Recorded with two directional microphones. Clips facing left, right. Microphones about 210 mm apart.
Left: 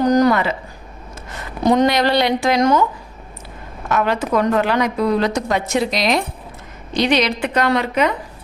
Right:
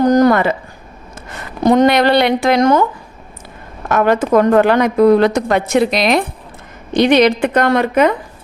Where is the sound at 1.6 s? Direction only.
55° right (ahead or behind).